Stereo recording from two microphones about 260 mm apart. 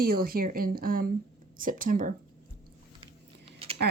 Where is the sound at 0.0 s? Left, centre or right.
Right.